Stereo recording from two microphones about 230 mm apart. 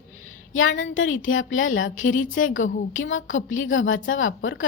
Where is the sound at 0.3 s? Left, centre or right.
Left.